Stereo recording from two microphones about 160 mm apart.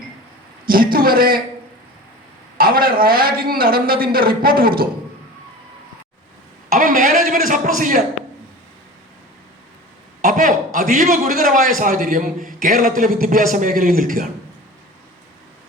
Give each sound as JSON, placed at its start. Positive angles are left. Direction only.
{"t": 0.6, "sound": "a man's voice", "side_deg": -65}
{"t": 2.6, "sound": "a man's voice", "side_deg": -65}
{"t": 6.7, "sound": "a man's voice", "side_deg": -55}
{"t": 10.2, "sound": "a man's voice", "side_deg": -55}